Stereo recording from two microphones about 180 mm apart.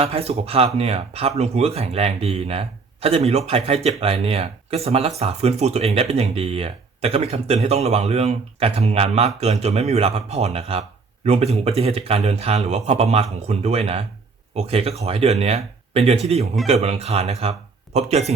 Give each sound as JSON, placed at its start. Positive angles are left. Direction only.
{"t": 0.0, "sound": "speech", "side_deg": -35}